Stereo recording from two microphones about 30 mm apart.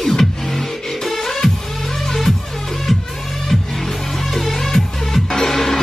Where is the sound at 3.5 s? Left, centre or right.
Centre.